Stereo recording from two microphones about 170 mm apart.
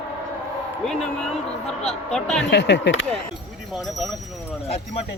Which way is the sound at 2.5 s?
90° left.